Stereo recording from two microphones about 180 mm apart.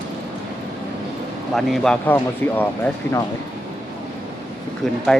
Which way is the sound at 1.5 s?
Centre (ahead or behind).